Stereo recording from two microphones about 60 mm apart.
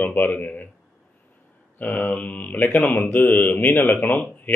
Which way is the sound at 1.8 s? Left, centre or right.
Left.